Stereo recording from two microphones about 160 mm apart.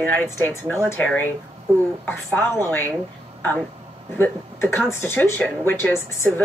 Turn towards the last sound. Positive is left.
turn(degrees=15)  # may be behind; listen again after turning